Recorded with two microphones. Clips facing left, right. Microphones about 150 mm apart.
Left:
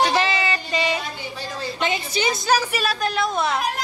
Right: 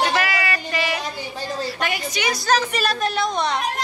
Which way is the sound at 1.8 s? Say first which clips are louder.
Left 2 dB; 25° left (ahead or behind).